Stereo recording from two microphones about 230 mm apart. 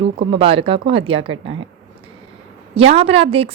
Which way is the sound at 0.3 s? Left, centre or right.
Right.